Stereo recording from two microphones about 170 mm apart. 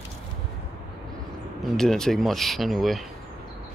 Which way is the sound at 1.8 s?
Centre (ahead or behind).